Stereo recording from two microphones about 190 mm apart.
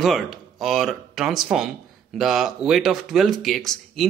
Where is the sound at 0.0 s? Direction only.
Centre (ahead or behind).